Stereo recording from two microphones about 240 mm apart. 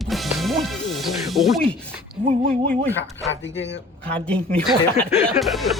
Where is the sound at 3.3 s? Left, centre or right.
Left.